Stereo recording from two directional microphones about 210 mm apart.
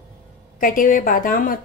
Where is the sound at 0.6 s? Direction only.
40° left (ahead or behind).